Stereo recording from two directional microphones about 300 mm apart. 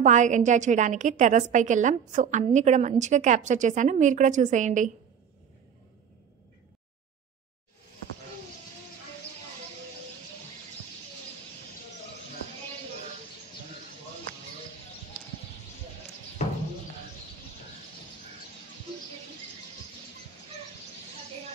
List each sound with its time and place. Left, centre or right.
0.0 s a woman's voice: right
16.4 s music: left